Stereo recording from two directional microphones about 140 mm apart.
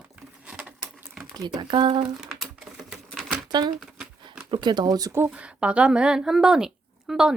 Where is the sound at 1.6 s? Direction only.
35° right (ahead or behind).